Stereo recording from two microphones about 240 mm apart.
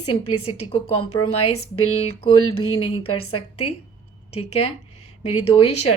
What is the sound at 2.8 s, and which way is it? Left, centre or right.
Speech, left.